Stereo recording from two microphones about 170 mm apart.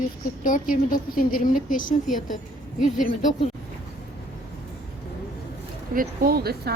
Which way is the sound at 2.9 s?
50° left (ahead or behind).